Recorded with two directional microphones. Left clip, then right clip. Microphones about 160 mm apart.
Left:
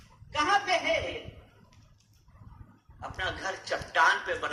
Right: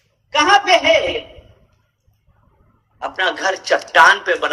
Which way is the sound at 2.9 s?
50° right (ahead or behind).